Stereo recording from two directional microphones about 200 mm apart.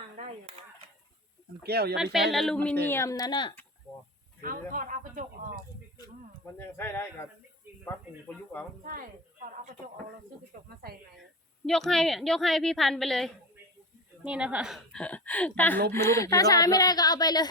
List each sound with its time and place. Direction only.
1.6 s a woman's voice: 55° right (ahead or behind)
2.0 s a woman's voice: centre (ahead or behind)
2.8 s speech: 15° left (ahead or behind)
4.7 s a woman's voice: 40° right (ahead or behind)
6.4 s speech: 15° left (ahead or behind)
8.3 s speech: 5° left (ahead or behind)
8.8 s a woman's voice: 45° right (ahead or behind)
11.6 s a woman's voice: 5° left (ahead or behind); by 17.5 s 20° left (ahead or behind)